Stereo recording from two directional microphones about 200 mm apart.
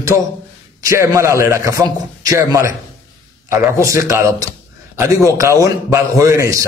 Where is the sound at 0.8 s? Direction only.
15° right (ahead or behind).